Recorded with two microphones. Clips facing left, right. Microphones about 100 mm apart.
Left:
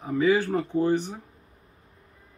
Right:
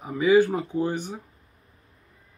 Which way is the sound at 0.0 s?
10° right (ahead or behind).